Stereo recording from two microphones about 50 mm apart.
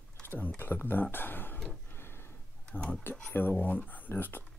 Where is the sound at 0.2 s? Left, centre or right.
Left.